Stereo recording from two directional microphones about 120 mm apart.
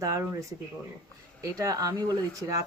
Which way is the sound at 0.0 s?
25° right (ahead or behind).